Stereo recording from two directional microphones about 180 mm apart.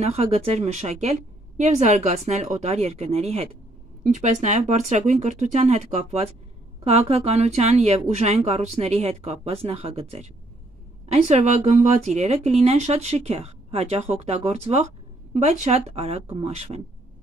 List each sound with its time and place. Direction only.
0.0 s speech: 35° right (ahead or behind)